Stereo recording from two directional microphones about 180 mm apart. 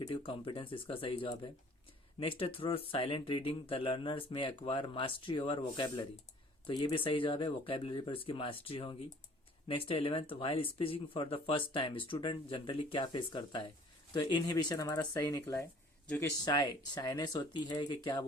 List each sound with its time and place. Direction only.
0.1 s speech: 30° left (ahead or behind)